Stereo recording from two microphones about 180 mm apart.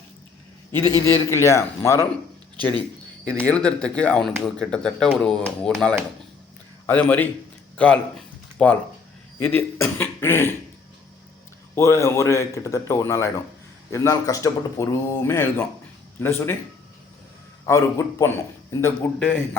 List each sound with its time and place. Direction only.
0.7 s a man's voice: 25° right (ahead or behind)
1.3 s speech: 15° left (ahead or behind)
11.7 s speech: 15° left (ahead or behind)
17.7 s speech: 15° left (ahead or behind)